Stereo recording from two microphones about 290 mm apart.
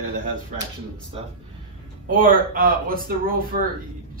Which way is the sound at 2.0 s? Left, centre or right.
Right.